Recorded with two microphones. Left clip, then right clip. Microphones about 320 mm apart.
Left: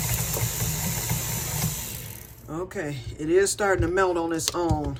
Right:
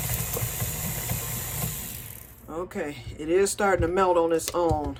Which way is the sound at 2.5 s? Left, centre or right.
Centre.